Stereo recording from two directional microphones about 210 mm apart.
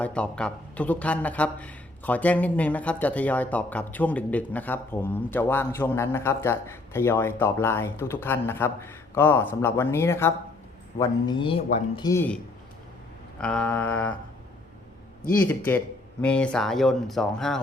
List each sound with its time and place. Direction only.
0.0 s a man's voice: 5° left (ahead or behind); by 12.1 s 25° left (ahead or behind)
12.1 s a man's voice: 10° left (ahead or behind)
13.4 s a man's voice: 5° left (ahead or behind)
15.4 s a man's voice: 10° left (ahead or behind)